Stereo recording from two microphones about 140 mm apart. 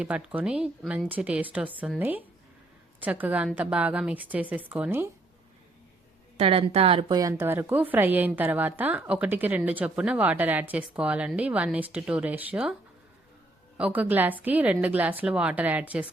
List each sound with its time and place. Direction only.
0.0 s a woman's voice: 10° right (ahead or behind)
6.3 s a woman's voice: 45° right (ahead or behind)
7.1 s a woman's voice: 25° right (ahead or behind); by 12.7 s 10° right (ahead or behind)
13.7 s a woman's voice: 10° right (ahead or behind)